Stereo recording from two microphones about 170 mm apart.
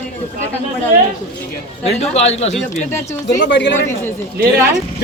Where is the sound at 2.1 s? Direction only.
40° left (ahead or behind).